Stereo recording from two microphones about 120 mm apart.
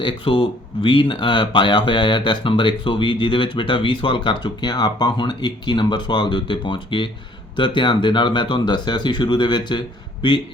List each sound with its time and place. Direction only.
0.0 s speech: 45° left (ahead or behind)